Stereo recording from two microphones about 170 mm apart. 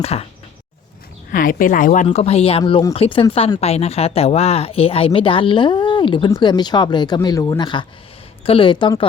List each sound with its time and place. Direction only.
0.0 s speech: 35° left (ahead or behind)
1.3 s speech: 55° left (ahead or behind)
2.0 s speech: 35° left (ahead or behind)